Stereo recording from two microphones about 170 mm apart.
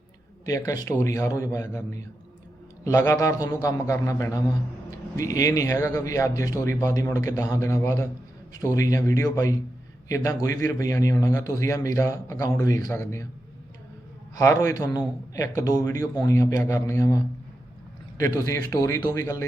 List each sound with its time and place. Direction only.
0.4 s a man's voice: 20° left (ahead or behind)
14.3 s a man's voice: 15° left (ahead or behind)
18.2 s a man's voice: 15° left (ahead or behind)